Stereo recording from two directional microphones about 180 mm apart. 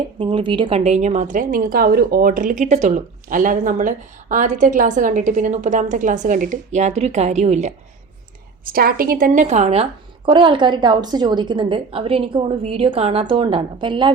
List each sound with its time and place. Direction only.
0.2 s a woman's voice: 30° right (ahead or behind)
8.7 s a woman's voice: 55° right (ahead or behind); by 9.8 s 35° right (ahead or behind)
10.2 s a woman's voice: 25° right (ahead or behind)